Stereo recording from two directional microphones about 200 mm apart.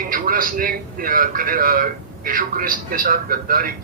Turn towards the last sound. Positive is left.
turn(degrees=-45)  # may be behind; listen again after turning